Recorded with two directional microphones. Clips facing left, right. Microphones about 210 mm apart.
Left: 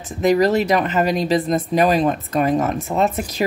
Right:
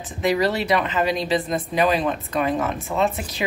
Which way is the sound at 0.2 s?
45° left (ahead or behind).